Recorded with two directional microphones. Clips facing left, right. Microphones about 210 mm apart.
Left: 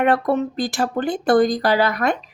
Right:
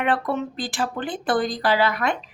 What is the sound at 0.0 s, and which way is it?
Speech, 40° left (ahead or behind).